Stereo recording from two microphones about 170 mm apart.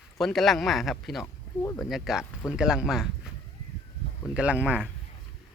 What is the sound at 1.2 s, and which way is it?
Speech, 20° left (ahead or behind).